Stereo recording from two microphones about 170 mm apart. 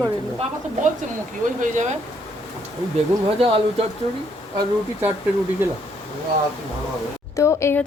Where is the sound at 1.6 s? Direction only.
45° right (ahead or behind).